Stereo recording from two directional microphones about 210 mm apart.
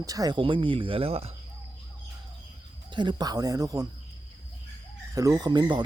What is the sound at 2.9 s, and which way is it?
Speech, 20° right (ahead or behind).